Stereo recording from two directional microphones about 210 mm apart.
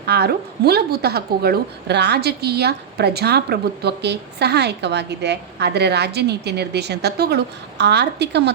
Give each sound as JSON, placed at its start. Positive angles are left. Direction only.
{"t": 0.0, "sound": "a woman's voice", "side_deg": -50}